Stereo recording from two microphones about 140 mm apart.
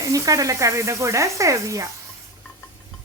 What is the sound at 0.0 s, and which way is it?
A woman's voice, 25° right (ahead or behind).